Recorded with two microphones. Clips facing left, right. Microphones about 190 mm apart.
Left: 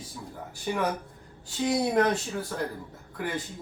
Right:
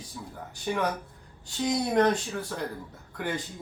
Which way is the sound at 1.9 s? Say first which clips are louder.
Right 1 dB; 5° left (ahead or behind).